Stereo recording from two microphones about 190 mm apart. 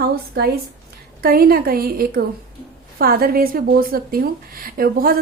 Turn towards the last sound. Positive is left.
turn(degrees=-50)  # may be behind; listen again after turning